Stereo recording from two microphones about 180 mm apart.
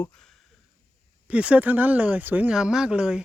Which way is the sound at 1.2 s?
5° right (ahead or behind).